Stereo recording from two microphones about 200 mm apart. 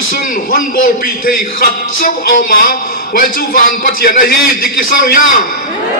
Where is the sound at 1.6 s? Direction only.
45° left (ahead or behind).